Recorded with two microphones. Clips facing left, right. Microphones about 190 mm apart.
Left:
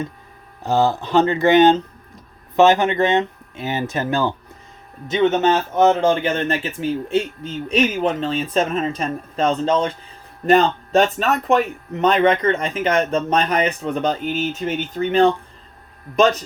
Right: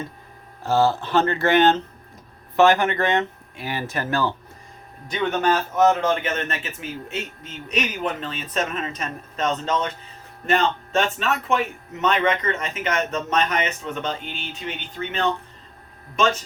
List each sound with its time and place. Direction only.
0.6 s speech: 15° left (ahead or behind); by 15.3 s 40° left (ahead or behind)